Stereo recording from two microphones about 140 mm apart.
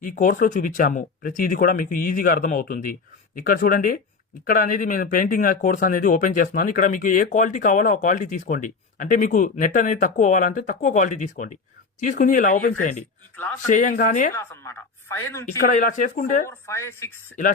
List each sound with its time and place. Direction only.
0.0 s speech: 70° left (ahead or behind)
14.3 s speech: 20° left (ahead or behind)
15.4 s speech: 75° left (ahead or behind)
16.5 s speech: 20° left (ahead or behind)